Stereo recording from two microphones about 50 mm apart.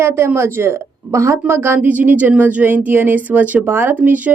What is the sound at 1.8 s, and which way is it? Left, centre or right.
Speech, right.